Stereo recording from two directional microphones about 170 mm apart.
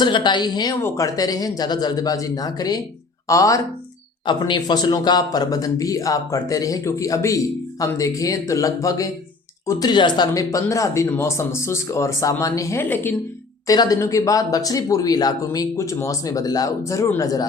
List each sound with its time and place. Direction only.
0.0 s speech: 25° left (ahead or behind); by 13.1 s 10° left (ahead or behind)
13.7 s speech: 20° left (ahead or behind)